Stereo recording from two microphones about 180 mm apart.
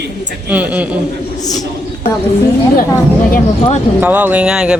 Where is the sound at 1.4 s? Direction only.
20° left (ahead or behind).